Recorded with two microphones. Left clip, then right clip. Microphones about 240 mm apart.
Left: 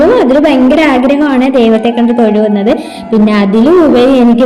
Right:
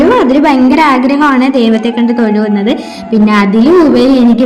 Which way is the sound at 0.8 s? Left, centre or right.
Right.